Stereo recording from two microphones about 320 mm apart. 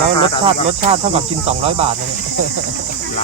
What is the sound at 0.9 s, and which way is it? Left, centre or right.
Cricket, centre.